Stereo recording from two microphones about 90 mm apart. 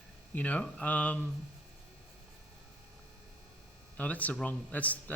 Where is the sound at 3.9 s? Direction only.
15° left (ahead or behind).